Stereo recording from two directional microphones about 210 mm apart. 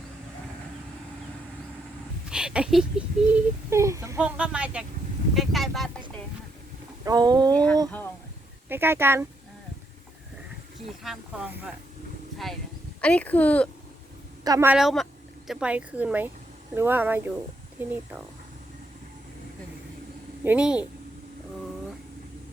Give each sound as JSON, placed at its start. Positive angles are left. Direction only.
{"t": 2.3, "sound": "speech", "side_deg": -5}
{"t": 7.0, "sound": "speech", "side_deg": -20}
{"t": 7.5, "sound": "speech", "side_deg": 5}
{"t": 8.7, "sound": "speech", "side_deg": -10}
{"t": 10.8, "sound": "speech", "side_deg": 0}
{"t": 13.0, "sound": "speech", "side_deg": 5}
{"t": 14.4, "sound": "speech", "side_deg": -15}
{"t": 20.4, "sound": "speech", "side_deg": -5}